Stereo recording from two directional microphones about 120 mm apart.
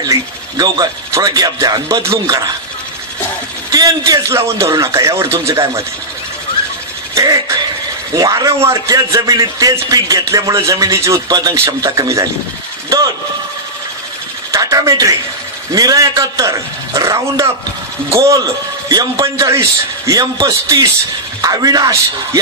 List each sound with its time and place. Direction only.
0.0 s speech: 30° right (ahead or behind)
3.7 s a man's voice: 30° right (ahead or behind)
7.2 s a man's voice: 25° right (ahead or behind)
14.5 s a sound: 30° right (ahead or behind)
15.7 s a man's voice: 30° right (ahead or behind)